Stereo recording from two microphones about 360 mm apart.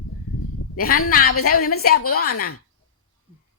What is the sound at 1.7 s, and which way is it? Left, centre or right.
Speech, left.